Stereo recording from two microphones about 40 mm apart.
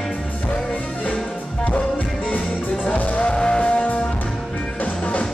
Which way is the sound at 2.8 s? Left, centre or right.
Left.